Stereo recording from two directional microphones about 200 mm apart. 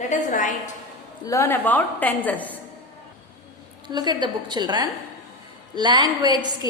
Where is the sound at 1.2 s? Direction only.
15° left (ahead or behind).